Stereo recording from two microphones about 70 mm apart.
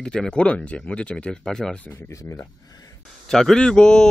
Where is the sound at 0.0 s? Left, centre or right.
Centre.